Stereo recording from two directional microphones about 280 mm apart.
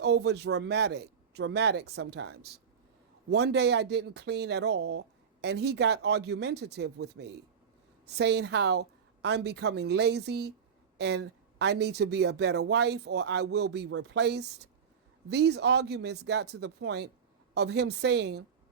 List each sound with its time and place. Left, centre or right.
0.0 s speech: right